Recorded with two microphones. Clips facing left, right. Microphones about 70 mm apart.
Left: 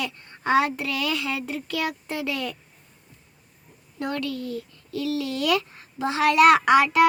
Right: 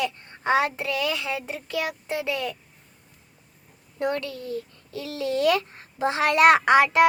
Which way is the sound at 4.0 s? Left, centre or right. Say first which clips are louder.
Right 1 dB; right.